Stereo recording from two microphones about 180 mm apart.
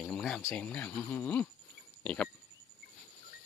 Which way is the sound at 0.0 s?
5° left (ahead or behind).